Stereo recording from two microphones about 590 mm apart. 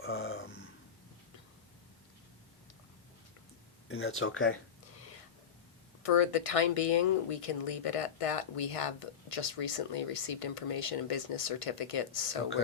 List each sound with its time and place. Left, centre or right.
0.0 s a sound: left
3.8 s speech: centre
4.9 s whispering: left
6.0 s speech: left